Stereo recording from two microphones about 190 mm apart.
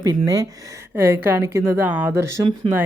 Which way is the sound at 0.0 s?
15° right (ahead or behind).